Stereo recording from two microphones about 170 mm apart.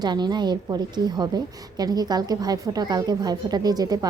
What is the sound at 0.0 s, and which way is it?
A woman's voice, 25° right (ahead or behind).